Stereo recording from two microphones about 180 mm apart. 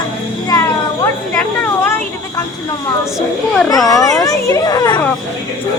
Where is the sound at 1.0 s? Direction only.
10° left (ahead or behind).